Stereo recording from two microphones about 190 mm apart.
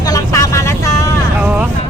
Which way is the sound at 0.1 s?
15° left (ahead or behind).